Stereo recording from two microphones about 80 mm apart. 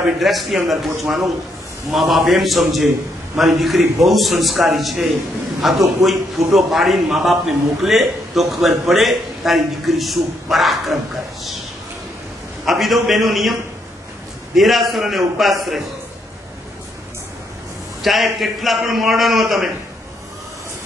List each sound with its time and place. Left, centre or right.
0.0 s a man's voice: centre
12.6 s a man's voice: centre
18.0 s a man's voice: centre